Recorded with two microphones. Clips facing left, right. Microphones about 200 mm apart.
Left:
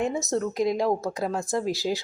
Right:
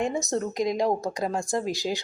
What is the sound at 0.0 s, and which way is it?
A woman's voice, centre (ahead or behind).